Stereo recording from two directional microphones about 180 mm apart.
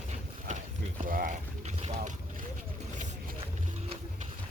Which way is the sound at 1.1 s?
50° right (ahead or behind).